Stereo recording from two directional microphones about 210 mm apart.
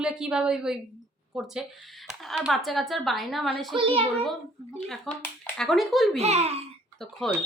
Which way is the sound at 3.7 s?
25° right (ahead or behind).